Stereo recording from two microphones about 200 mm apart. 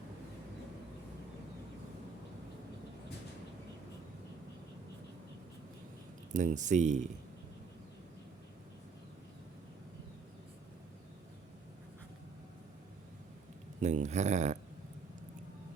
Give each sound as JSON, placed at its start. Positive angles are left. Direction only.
{"t": 6.3, "sound": "speech", "side_deg": -40}
{"t": 13.8, "sound": "speech", "side_deg": -35}